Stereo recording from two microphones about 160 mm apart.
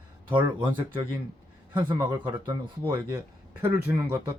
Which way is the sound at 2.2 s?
25° right (ahead or behind).